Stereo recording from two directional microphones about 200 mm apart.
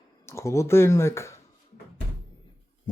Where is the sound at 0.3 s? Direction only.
15° left (ahead or behind).